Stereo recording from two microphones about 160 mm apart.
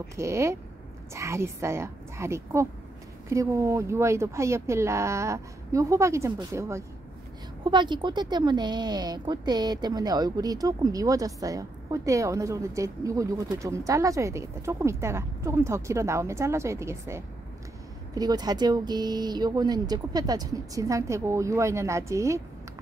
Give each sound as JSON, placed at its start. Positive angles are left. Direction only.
{"t": 0.1, "sound": "speech", "side_deg": -20}
{"t": 7.6, "sound": "speech", "side_deg": -30}